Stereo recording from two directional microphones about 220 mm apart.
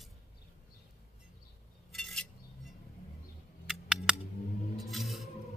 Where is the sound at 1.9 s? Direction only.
Centre (ahead or behind).